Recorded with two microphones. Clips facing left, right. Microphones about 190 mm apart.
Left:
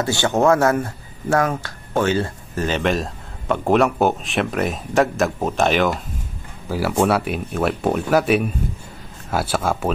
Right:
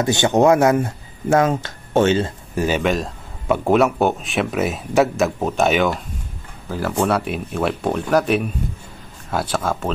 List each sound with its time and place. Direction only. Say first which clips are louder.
0.0 s speech: right 3 dB; 20° right (ahead or behind)
2.6 s a man's voice: right 1 dB; 5° right (ahead or behind)